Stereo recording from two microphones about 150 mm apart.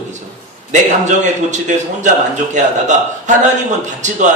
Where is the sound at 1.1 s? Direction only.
55° right (ahead or behind).